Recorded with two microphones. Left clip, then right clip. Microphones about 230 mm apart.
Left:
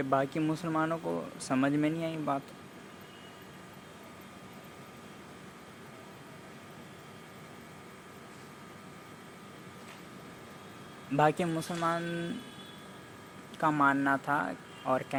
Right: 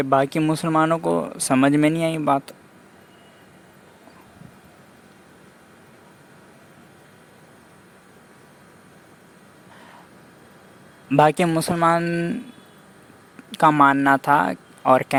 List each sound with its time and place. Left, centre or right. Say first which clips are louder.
0.0 s speech: right 11 dB; right
11.1 s speech: right 11 dB; right
13.5 s speech: right 12 dB; right